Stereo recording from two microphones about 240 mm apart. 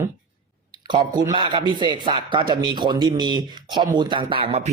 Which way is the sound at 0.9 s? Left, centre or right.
Centre.